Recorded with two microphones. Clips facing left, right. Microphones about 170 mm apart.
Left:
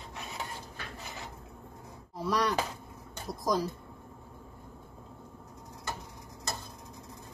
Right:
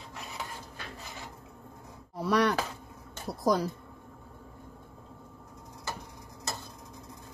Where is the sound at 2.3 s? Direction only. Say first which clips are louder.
Right 4 dB; 65° right (ahead or behind).